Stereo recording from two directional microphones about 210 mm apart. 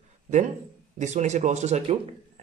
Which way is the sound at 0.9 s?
35° right (ahead or behind).